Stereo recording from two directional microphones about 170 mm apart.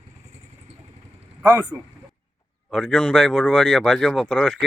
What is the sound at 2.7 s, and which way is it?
Speech, 5° left (ahead or behind).